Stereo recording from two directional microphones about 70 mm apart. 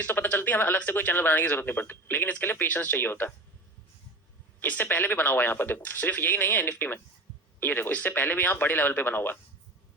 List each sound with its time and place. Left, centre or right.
0.0 s speech: left
4.6 s speech: left